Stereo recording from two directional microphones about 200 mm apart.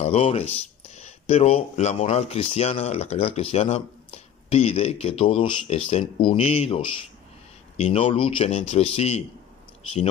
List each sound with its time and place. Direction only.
0.0 s speech: 30° left (ahead or behind)